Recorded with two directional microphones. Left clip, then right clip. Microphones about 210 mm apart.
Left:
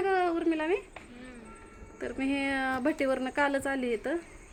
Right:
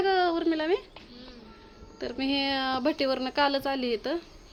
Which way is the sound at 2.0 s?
15° right (ahead or behind).